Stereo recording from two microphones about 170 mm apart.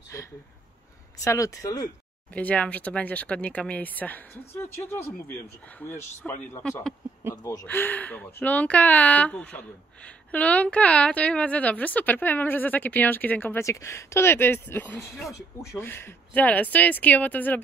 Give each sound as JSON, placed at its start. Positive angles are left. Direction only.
{"t": 0.1, "sound": "speech", "side_deg": 15}
{"t": 2.3, "sound": "speech", "side_deg": 10}
{"t": 7.6, "sound": "speech", "side_deg": 10}